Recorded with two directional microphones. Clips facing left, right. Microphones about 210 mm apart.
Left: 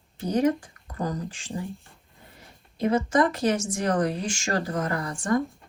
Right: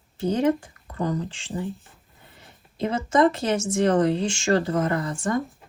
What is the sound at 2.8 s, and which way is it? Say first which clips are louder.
A woman's voice: right 1 dB; 25° right (ahead or behind).